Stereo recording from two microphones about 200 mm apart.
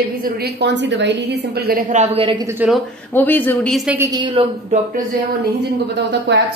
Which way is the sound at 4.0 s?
20° right (ahead or behind).